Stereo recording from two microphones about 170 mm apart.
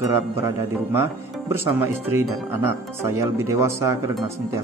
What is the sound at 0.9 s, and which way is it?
Speech, 15° right (ahead or behind).